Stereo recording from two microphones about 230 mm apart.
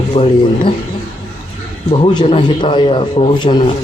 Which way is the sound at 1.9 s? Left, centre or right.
Left.